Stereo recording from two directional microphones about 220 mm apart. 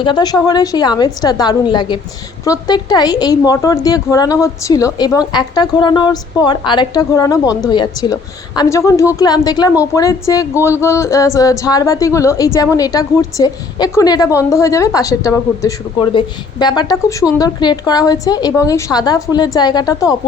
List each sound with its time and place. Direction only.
0.0 s a woman's voice: 20° left (ahead or behind)